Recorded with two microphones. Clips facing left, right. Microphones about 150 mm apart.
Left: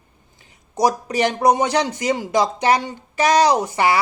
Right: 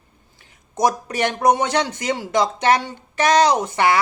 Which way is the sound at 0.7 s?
10° left (ahead or behind).